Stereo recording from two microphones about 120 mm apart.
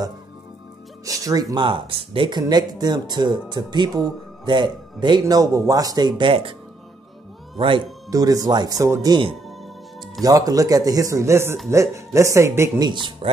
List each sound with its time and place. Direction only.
1.0 s speech: 30° right (ahead or behind)
5.2 s speech: 30° right (ahead or behind); by 6.5 s 45° right (ahead or behind)
7.5 s speech: 45° right (ahead or behind)
8.1 s speech: 30° right (ahead or behind)
10.2 s speech: 30° right (ahead or behind)
12.8 s speech: 40° right (ahead or behind)